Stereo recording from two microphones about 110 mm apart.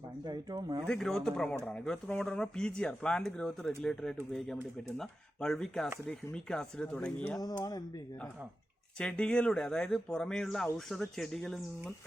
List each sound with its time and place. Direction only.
0.3 s speech: 40° right (ahead or behind)
0.9 s speech: 5° left (ahead or behind)
7.3 s speech: 35° left (ahead or behind)
9.0 s speech: 10° left (ahead or behind)